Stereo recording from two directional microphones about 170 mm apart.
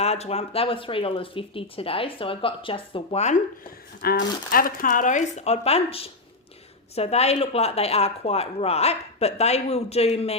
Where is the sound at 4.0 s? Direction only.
60° left (ahead or behind); by 10.4 s 35° left (ahead or behind).